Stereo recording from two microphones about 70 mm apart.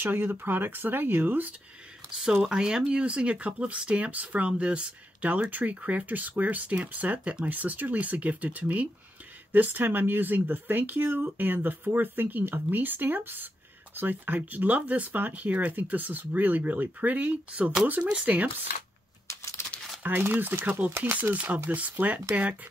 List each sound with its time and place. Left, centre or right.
0.0 s speech: right
2.4 s speech: centre
19.2 s a sound: left
20.0 s speech: right